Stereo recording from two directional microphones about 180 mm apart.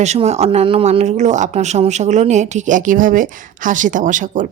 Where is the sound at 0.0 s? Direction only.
40° right (ahead or behind).